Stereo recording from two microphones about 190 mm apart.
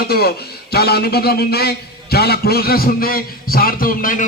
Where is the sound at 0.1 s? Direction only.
55° left (ahead or behind).